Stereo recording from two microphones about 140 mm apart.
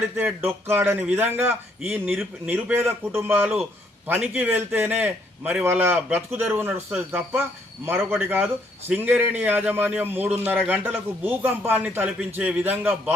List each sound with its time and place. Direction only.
0.2 s a man's voice: 15° right (ahead or behind)